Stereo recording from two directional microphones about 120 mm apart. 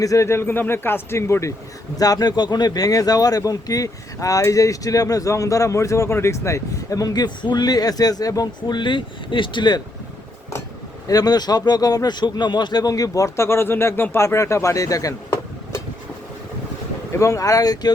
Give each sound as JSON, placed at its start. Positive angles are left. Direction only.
{"t": 0.0, "sound": "speech", "side_deg": 25}
{"t": 11.1, "sound": "speech", "side_deg": 35}
{"t": 17.1, "sound": "speech", "side_deg": 25}